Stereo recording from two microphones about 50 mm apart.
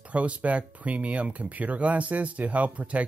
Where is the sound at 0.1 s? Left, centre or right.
Right.